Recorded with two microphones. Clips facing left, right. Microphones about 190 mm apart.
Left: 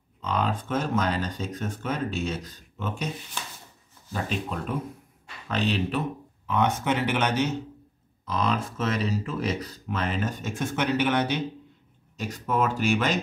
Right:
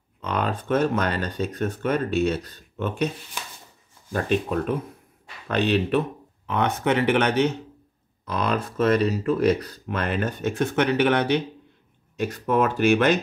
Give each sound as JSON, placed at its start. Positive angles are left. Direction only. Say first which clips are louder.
{"t": 0.2, "sound": "speech", "louder": "right 1 dB", "side_deg": -60}
{"t": 4.1, "sound": "speech", "louder": "right 7 dB", "side_deg": -55}